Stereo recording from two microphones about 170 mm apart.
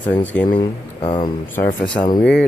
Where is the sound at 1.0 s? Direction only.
30° left (ahead or behind).